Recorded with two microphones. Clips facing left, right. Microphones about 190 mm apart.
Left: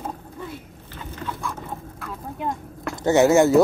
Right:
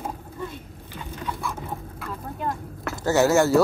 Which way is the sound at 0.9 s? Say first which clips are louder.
Even; 10° right (ahead or behind).